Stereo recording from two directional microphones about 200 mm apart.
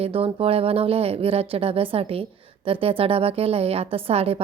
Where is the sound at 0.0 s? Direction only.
30° right (ahead or behind).